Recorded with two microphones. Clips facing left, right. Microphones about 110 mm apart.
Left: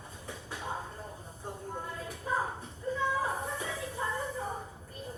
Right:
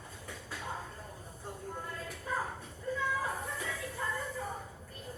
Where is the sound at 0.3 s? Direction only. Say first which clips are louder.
Left 3 dB; 25° left (ahead or behind).